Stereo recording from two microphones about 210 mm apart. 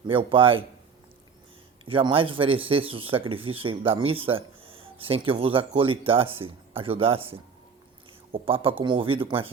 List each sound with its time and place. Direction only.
0.1 s speech: 25° right (ahead or behind)
1.8 s speech: 25° right (ahead or behind)